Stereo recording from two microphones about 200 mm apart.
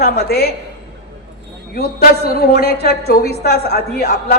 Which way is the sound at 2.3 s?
50° left (ahead or behind).